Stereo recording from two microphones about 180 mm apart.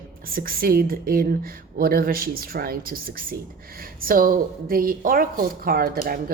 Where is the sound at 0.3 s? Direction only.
55° right (ahead or behind).